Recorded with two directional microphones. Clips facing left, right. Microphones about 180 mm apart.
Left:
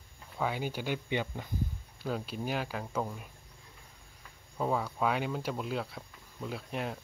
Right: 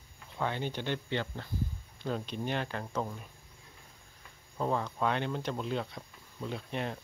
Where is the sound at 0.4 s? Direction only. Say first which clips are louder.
Left 1 dB; 5° left (ahead or behind).